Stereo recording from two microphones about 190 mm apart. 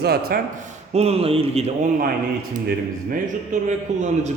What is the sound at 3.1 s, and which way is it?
Speech, 45° right (ahead or behind).